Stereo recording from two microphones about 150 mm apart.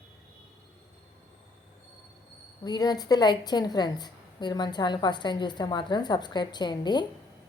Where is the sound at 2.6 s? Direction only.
25° left (ahead or behind).